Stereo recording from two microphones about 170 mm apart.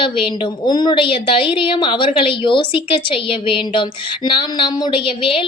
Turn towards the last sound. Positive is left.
turn(degrees=30)  # may be behind; listen again after turning